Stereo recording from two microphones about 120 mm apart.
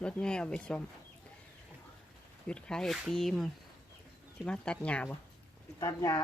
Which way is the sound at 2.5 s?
5° left (ahead or behind).